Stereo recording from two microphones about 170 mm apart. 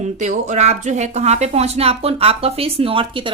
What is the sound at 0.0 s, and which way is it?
A woman's voice, 45° right (ahead or behind).